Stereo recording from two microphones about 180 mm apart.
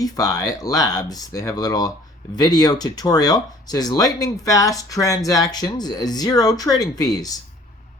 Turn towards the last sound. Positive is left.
turn(degrees=20)  # may be behind; listen again after turning